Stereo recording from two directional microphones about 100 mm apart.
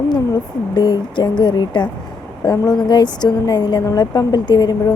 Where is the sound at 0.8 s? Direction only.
45° left (ahead or behind).